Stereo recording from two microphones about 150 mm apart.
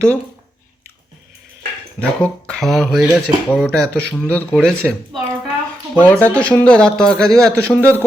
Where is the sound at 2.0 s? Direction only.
5° left (ahead or behind).